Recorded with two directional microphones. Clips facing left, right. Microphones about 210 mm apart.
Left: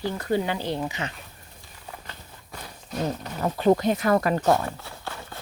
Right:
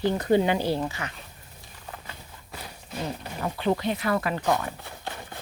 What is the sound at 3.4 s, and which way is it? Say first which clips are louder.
Speech: left 6 dB; 40° left (ahead or behind).